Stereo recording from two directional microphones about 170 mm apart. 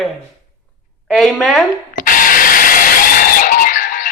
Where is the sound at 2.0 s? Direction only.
55° left (ahead or behind).